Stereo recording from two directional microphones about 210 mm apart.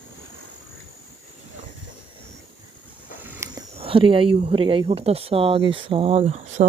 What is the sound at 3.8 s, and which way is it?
Speech, 25° right (ahead or behind).